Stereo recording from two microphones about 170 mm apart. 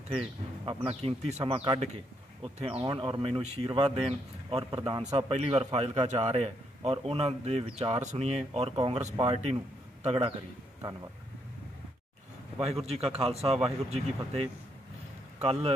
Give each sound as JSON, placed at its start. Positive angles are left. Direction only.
{"t": 0.1, "sound": "speech", "side_deg": -35}
{"t": 12.8, "sound": "speech", "side_deg": -35}